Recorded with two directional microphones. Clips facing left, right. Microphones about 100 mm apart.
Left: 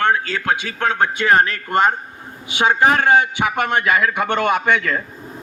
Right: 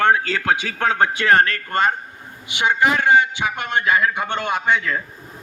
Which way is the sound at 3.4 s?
90° left.